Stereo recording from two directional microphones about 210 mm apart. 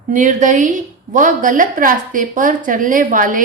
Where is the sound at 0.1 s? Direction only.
35° right (ahead or behind).